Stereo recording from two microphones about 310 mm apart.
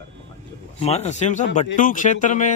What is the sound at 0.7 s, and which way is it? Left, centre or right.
Speech, left.